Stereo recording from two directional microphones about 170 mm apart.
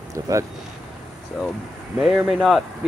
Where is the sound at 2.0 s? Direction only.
5° right (ahead or behind).